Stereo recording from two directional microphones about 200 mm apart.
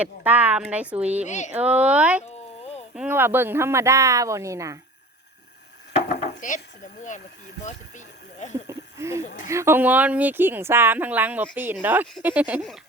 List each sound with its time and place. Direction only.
0.0 s speech: 10° right (ahead or behind)
1.2 s speech: 35° left (ahead or behind)
1.5 s speech: 5° right (ahead or behind)
2.2 s a sound: 35° left (ahead or behind)
2.9 s speech: 5° right (ahead or behind)
6.1 s speech: 35° left (ahead or behind)
8.6 s a sound: 15° right (ahead or behind)
9.5 s speech: 15° right (ahead or behind)